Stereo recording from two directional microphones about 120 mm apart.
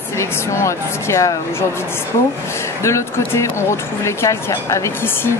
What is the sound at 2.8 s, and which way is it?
Speech, 25° left (ahead or behind).